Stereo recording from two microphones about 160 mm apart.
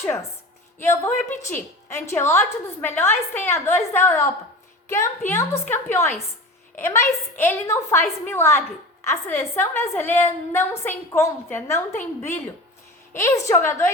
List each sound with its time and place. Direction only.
0.0 s a woman's voice: 15° left (ahead or behind)
13.1 s a woman's voice: 20° left (ahead or behind)